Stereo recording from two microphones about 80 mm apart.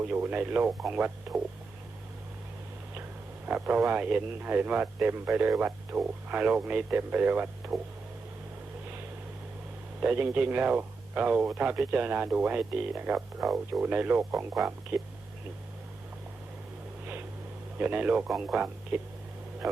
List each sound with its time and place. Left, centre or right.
0.0 s speech: right
3.4 s speech: right
10.0 s speech: right
13.4 s speech: centre
13.8 s speech: right
17.7 s speech: centre